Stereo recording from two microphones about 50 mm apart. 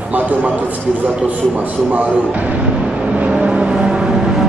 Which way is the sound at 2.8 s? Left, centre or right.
Right.